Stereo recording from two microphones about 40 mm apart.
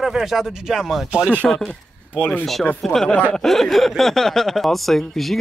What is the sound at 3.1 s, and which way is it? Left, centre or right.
Speech, left.